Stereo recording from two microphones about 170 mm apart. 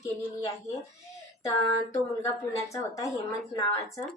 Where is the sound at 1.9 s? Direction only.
20° left (ahead or behind).